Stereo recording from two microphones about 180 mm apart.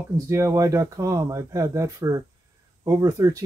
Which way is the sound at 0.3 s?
15° right (ahead or behind).